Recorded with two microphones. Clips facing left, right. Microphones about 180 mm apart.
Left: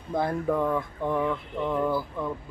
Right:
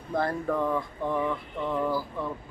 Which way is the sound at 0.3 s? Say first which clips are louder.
Left 2 dB; 5° left (ahead or behind).